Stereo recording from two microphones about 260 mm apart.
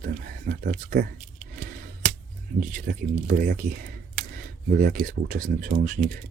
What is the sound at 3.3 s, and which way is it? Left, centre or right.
Speech, right.